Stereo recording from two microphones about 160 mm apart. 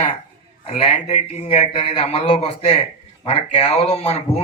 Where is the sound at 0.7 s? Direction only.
40° left (ahead or behind).